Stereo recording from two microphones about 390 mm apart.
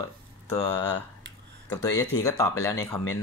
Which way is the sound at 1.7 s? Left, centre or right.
Centre.